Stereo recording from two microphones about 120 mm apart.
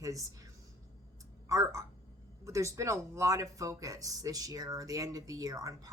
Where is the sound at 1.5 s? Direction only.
25° right (ahead or behind).